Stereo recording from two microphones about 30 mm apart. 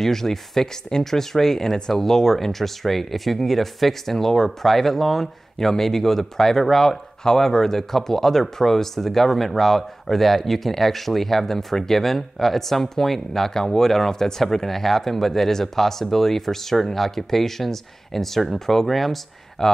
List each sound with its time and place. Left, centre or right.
0.0 s speech: centre
5.2 s speech: centre
19.6 s speech: centre